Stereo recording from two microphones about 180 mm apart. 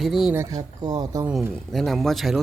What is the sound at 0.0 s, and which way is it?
Speech, centre (ahead or behind).